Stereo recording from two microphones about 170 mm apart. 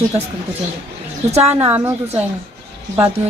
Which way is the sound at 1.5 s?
10° right (ahead or behind).